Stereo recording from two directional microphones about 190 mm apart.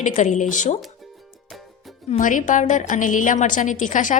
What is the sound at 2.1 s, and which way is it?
A woman's voice, 45° left (ahead or behind).